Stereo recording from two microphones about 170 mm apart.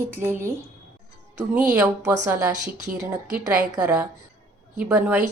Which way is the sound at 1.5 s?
5° right (ahead or behind).